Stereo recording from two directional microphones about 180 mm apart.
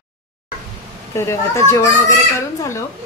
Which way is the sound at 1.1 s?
15° left (ahead or behind).